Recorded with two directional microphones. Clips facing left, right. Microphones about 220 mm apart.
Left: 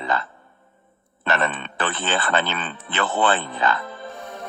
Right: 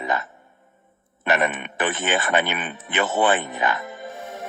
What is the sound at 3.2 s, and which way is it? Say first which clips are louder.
Music: even; 15° right (ahead or behind).